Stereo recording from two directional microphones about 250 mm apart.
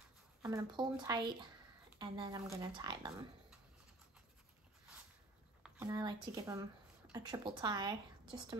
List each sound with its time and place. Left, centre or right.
0.4 s speech: centre
5.6 s a sound: centre
6.2 s a woman's voice: centre